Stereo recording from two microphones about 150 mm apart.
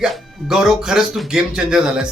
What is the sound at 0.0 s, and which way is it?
Speech, 5° right (ahead or behind).